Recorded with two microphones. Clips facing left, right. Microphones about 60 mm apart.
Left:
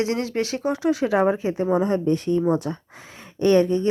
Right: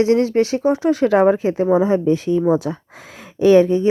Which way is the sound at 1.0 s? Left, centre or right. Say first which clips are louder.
Right 8 dB; right.